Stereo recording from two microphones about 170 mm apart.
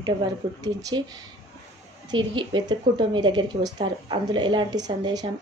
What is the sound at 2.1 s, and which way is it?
A woman's voice, 30° right (ahead or behind).